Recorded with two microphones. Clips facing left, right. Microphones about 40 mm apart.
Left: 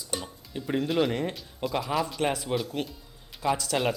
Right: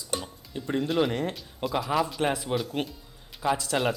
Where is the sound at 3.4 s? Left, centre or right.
Centre.